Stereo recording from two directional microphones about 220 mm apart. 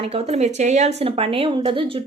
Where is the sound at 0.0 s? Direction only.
25° right (ahead or behind).